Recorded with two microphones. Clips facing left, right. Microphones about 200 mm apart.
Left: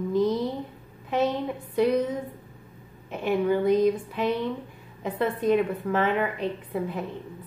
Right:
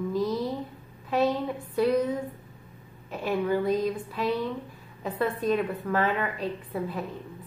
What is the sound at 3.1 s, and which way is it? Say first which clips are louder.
A woman's voice: left 3 dB; 15° left (ahead or behind).